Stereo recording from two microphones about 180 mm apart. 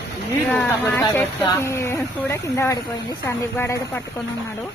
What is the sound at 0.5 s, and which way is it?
Speech, 10° left (ahead or behind).